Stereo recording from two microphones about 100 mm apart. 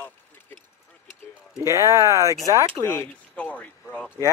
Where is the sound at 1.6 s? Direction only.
30° right (ahead or behind).